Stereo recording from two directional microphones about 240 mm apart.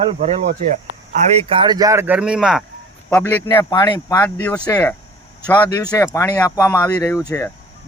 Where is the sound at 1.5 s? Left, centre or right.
Centre.